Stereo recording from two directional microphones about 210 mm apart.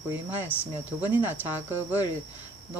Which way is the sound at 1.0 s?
10° right (ahead or behind).